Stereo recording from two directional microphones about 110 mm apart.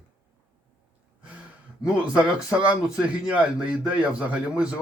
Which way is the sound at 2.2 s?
10° right (ahead or behind).